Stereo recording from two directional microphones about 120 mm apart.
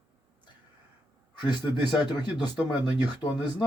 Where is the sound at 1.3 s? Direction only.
35° left (ahead or behind).